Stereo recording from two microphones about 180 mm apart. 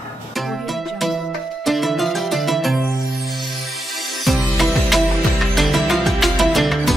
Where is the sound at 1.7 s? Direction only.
Centre (ahead or behind).